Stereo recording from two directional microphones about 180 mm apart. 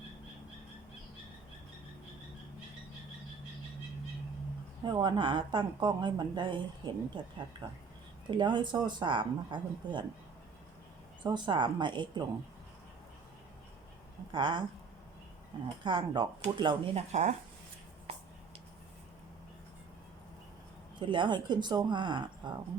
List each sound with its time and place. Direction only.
4.9 s speech: 25° right (ahead or behind)
11.2 s speech: 25° right (ahead or behind)
14.3 s speech: 25° right (ahead or behind)
15.8 s speech: 25° right (ahead or behind)
21.0 s speech: 25° right (ahead or behind)